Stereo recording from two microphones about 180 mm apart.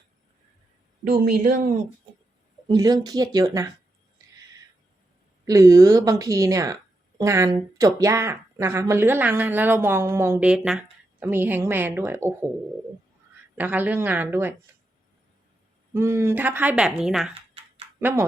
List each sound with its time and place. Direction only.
1.0 s speech: 50° right (ahead or behind)
2.6 s speech: 20° right (ahead or behind)
5.5 s a woman's voice: 15° right (ahead or behind)
13.6 s a woman's voice: 10° right (ahead or behind)
16.0 s a woman's voice: 15° right (ahead or behind)